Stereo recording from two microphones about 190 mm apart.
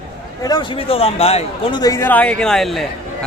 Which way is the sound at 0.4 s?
25° left (ahead or behind).